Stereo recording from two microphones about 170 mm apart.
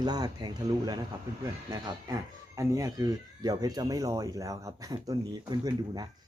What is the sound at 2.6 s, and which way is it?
Speech, 20° right (ahead or behind).